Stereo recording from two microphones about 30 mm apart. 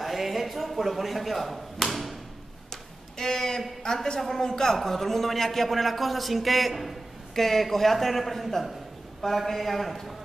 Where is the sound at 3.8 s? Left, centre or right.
Centre.